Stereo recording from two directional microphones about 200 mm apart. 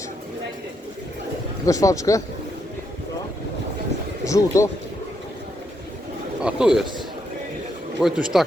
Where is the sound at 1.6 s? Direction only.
15° left (ahead or behind).